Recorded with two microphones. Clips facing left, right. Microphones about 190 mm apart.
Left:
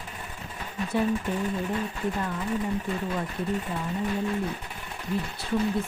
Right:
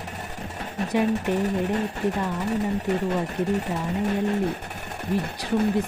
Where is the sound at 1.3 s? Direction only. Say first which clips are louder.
Right 5 dB; 75° right (ahead or behind).